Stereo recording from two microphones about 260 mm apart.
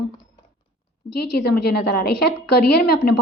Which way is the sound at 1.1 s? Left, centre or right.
Left.